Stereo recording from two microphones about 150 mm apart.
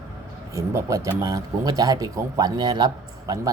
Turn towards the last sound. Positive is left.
turn(degrees=-25)  # may be behind; listen again after turning